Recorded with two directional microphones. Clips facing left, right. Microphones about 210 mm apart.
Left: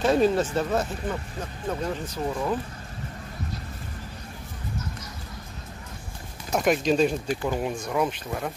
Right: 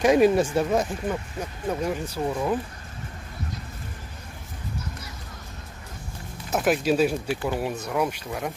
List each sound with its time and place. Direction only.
0.0 s speech: 15° right (ahead or behind)
6.5 s speech: 5° right (ahead or behind)